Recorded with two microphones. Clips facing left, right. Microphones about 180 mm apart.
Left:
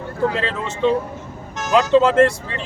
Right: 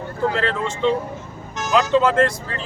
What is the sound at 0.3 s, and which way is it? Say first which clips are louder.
Speech: right 1 dB; 20° left (ahead or behind).